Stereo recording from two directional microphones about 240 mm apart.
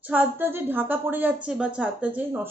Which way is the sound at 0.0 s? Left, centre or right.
Centre.